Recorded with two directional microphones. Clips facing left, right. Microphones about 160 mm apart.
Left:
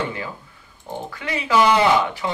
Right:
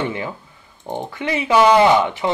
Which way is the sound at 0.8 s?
20° right (ahead or behind).